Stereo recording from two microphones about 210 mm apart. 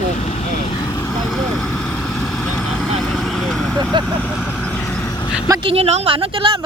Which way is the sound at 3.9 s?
20° right (ahead or behind).